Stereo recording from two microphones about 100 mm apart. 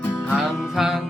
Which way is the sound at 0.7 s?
5° right (ahead or behind).